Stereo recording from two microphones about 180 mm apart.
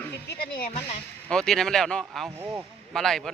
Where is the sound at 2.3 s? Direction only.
15° right (ahead or behind).